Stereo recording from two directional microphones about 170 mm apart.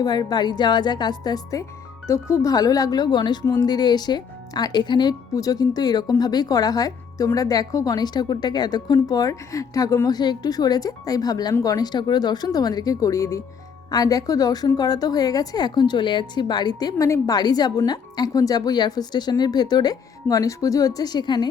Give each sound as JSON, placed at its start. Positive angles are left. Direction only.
{"t": 0.0, "sound": "a woman's voice", "side_deg": 25}